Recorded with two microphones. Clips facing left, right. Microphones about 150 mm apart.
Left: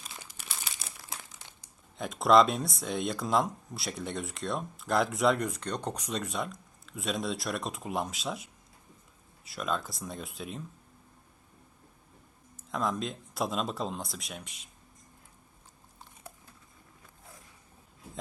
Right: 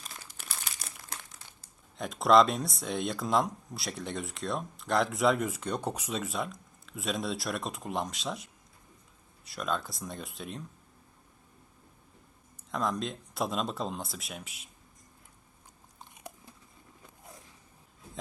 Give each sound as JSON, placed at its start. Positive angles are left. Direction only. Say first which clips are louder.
{"t": 0.0, "sound": "crumpling", "louder": "even", "side_deg": 0}
{"t": 2.0, "sound": "speech", "louder": "even", "side_deg": 0}
{"t": 12.5, "sound": "speech", "louder": "even", "side_deg": 0}